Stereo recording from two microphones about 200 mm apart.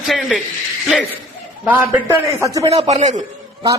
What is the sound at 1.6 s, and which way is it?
A man's voice, 10° right (ahead or behind).